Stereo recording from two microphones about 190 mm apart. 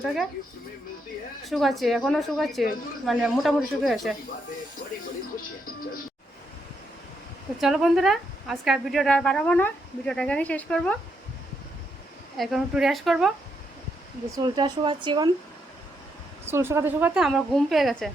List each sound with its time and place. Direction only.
1.5 s a woman's voice: centre (ahead or behind)
4.8 s speech: 65° left (ahead or behind)
7.6 s a woman's voice: centre (ahead or behind)
12.4 s a woman's voice: centre (ahead or behind)
14.3 s speech: 25° right (ahead or behind)
16.5 s a woman's voice: 15° right (ahead or behind)